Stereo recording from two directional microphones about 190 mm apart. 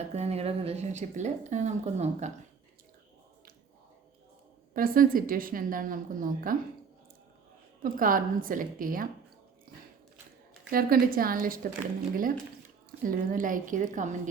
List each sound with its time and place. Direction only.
0.1 s a woman's voice: 35° right (ahead or behind)
4.7 s a woman's voice: 50° right (ahead or behind)
7.8 s a woman's voice: 45° right (ahead or behind)
10.7 s a woman's voice: 50° right (ahead or behind)
13.1 s a woman's voice: 45° right (ahead or behind)